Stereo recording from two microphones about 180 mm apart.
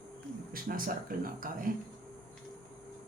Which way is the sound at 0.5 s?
50° right (ahead or behind).